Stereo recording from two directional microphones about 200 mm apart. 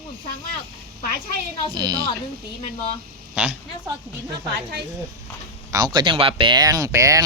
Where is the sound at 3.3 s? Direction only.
5° right (ahead or behind).